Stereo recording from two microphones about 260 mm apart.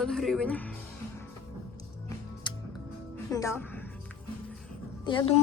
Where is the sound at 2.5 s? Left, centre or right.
Centre.